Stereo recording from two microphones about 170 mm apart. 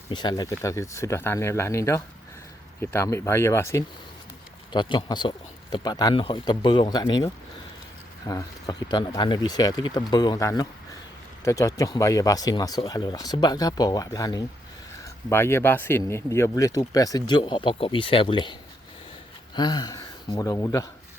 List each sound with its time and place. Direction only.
0.1 s speech: 25° left (ahead or behind)
4.7 s speech: 25° left (ahead or behind)
8.3 s speech: 20° left (ahead or behind)
19.5 s speech: 25° left (ahead or behind)